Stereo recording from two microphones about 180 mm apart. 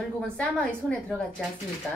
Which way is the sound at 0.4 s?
5° left (ahead or behind).